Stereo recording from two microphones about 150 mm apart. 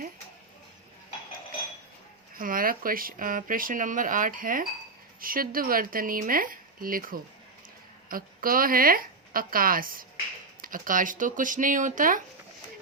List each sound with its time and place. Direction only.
2.4 s speech: 70° right (ahead or behind)